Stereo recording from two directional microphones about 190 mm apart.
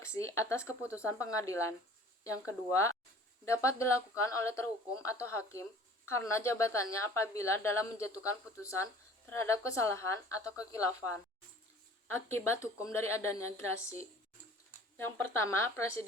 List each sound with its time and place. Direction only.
0.0 s a woman's voice: 15° left (ahead or behind)
3.4 s a woman's voice: 15° left (ahead or behind)